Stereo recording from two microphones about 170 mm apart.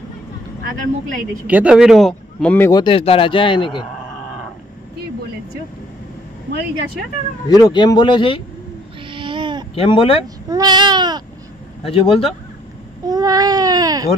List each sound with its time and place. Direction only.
0.7 s speech: 50° right (ahead or behind)
1.5 s speech: 5° right (ahead or behind); by 2.7 s 10° left (ahead or behind)
2.7 s speech: 30° left (ahead or behind)
7.4 s speech: 25° left (ahead or behind)
9.1 s a sound: 30° right (ahead or behind)
9.8 s speech: 30° left (ahead or behind)
10.5 s a sound: 25° right (ahead or behind)
11.8 s speech: 35° left (ahead or behind)
13.0 s baby cry: 20° right (ahead or behind)